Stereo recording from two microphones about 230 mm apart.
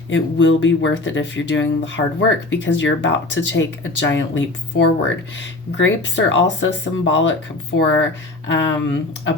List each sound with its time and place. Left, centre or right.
0.1 s speech: left
8.4 s speech: left